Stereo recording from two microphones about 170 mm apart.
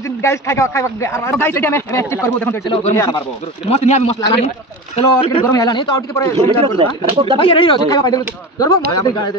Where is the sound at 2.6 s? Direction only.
30° left (ahead or behind).